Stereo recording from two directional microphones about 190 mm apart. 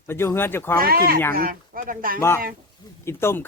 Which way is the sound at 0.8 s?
50° right (ahead or behind).